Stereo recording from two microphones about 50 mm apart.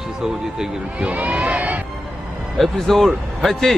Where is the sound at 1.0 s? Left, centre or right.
Right.